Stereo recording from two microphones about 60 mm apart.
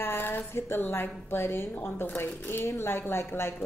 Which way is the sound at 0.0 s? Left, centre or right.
Left.